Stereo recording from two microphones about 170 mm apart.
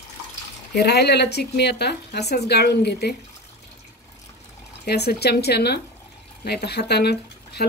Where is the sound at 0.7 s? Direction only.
75° left (ahead or behind).